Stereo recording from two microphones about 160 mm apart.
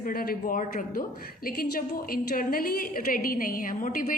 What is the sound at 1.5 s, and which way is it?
A woman's voice, 70° left (ahead or behind).